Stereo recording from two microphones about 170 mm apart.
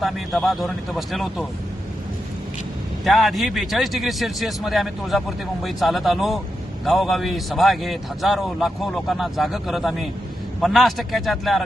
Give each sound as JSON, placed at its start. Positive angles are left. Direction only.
{"t": 0.0, "sound": "a man's voice", "side_deg": 0}
{"t": 3.0, "sound": "a man's voice", "side_deg": 0}